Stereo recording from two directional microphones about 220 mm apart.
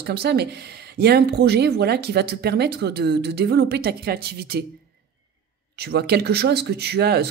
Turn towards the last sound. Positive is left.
turn(degrees=-45)  # may be behind; listen again after turning